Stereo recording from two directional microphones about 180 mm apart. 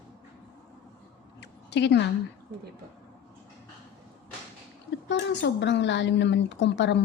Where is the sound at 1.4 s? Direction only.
70° left (ahead or behind).